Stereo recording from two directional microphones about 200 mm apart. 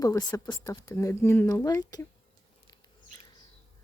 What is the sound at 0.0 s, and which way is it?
Speech, 20° left (ahead or behind).